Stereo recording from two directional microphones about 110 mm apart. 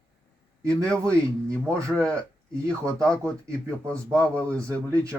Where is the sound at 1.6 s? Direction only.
25° right (ahead or behind).